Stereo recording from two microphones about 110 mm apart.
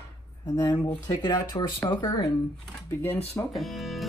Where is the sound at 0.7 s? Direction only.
40° left (ahead or behind).